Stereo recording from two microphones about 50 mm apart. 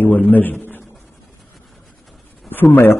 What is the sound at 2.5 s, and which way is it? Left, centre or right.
Speech, left.